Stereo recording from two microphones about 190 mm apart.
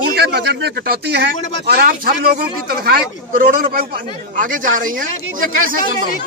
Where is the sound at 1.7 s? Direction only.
50° right (ahead or behind).